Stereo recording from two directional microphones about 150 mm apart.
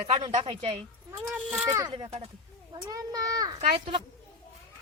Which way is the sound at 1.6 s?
20° right (ahead or behind).